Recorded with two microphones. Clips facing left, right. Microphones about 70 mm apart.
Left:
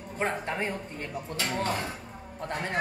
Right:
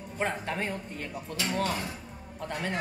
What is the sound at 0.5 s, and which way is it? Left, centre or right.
Speech, left.